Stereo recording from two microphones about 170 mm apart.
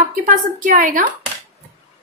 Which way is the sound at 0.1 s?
50° right (ahead or behind).